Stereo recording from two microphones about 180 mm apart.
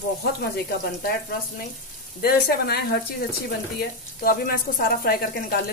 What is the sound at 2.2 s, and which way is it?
Speech, 60° left (ahead or behind).